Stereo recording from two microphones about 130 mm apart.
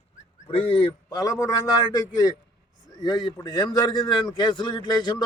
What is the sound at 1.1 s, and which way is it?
A man's voice, 30° left (ahead or behind).